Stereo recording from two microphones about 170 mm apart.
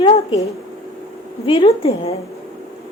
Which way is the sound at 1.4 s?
35° left (ahead or behind).